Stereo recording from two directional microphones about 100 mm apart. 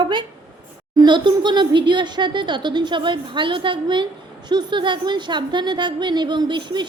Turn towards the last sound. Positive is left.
turn(degrees=-50)  # may be behind; listen again after turning